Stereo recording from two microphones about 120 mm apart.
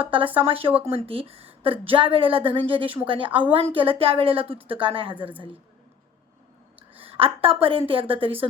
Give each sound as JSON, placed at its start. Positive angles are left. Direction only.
{"t": 0.0, "sound": "a woman's voice", "side_deg": -45}
{"t": 6.9, "sound": "a sound", "side_deg": -50}
{"t": 7.6, "sound": "a woman's voice", "side_deg": -50}